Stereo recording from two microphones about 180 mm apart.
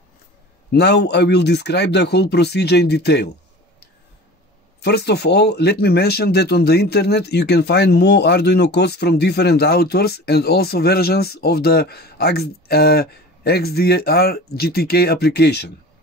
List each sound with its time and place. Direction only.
0.7 s speech: 65° left (ahead or behind)
4.8 s speech: 65° left (ahead or behind)